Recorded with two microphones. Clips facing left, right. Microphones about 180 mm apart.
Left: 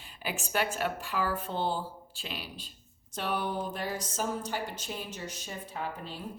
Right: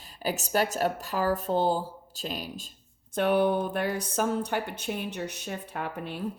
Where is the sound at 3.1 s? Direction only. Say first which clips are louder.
Right 9 dB; 55° right (ahead or behind).